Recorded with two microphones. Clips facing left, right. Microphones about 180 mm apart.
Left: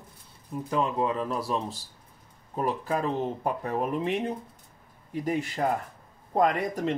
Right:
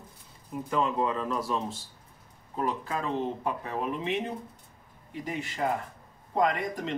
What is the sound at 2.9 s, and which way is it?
Speech, 40° left (ahead or behind).